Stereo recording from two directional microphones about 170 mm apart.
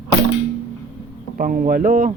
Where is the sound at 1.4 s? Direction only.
55° right (ahead or behind).